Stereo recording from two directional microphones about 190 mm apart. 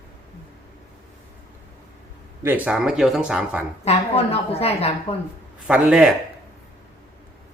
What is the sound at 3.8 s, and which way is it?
A woman's voice, 35° left (ahead or behind).